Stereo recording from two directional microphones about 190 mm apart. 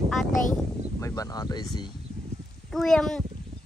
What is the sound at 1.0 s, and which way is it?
Speech, 15° left (ahead or behind).